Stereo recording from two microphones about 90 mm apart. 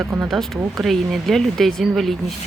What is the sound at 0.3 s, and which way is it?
Speech, centre (ahead or behind).